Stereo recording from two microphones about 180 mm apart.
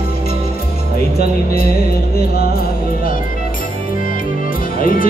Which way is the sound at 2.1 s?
60° left (ahead or behind).